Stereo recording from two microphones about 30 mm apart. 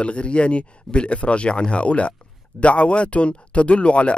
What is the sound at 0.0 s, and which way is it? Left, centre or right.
Speech, left.